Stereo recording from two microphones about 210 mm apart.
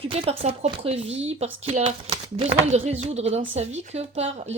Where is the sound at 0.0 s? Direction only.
30° right (ahead or behind).